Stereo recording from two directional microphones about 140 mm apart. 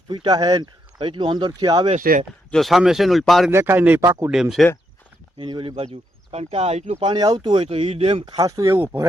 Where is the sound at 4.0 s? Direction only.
25° right (ahead or behind).